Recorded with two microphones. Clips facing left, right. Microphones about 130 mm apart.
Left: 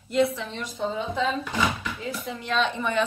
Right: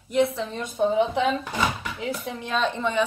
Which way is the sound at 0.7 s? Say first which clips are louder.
Right 8 dB; 70° right (ahead or behind).